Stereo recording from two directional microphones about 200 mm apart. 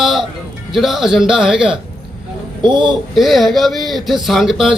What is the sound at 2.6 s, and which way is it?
Speech, 25° right (ahead or behind).